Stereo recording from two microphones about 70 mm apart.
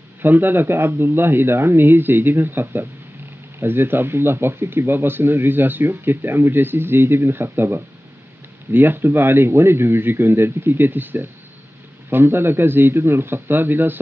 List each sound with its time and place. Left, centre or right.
0.2 s speech: right